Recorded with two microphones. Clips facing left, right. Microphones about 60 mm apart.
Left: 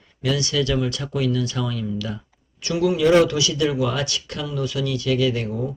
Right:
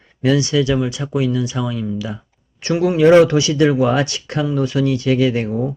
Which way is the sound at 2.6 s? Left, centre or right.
Right.